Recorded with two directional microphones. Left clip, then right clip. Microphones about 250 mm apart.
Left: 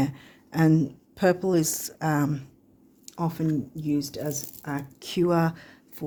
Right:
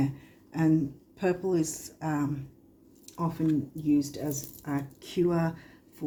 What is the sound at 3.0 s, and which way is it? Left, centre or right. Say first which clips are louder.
Chewing: left 2 dB; left.